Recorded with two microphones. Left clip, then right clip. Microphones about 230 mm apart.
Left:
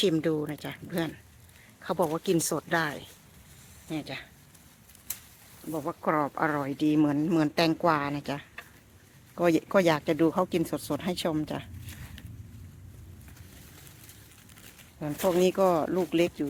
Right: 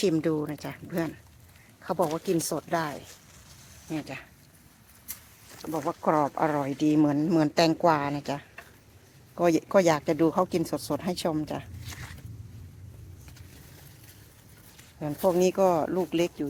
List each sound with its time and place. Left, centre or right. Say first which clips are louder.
0.0 s speech: even; centre
3.8 s speech: right 1 dB; centre
5.7 s speech: right 3 dB; centre
14.9 s speech: right 1 dB; centre